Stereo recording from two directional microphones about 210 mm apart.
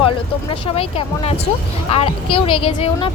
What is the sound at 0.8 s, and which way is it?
A woman's voice, 25° left (ahead or behind).